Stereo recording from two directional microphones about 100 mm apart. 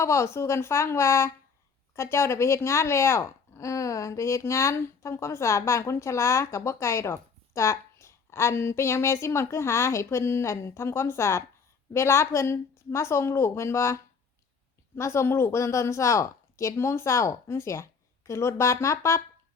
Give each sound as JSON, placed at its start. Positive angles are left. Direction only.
{"t": 0.0, "sound": "speech", "side_deg": 25}